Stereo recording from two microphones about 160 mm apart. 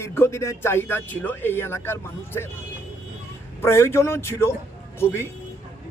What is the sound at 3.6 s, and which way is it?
Speech, 15° left (ahead or behind).